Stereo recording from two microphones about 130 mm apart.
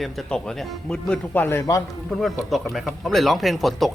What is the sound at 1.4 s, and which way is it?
Speech, 20° left (ahead or behind).